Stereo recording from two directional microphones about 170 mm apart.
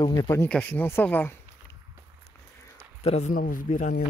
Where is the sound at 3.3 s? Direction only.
50° left (ahead or behind).